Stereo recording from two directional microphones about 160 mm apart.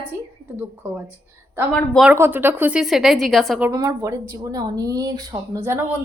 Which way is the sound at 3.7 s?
20° right (ahead or behind).